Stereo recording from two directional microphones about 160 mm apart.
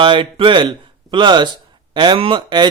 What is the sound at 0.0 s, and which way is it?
Speech, 30° right (ahead or behind).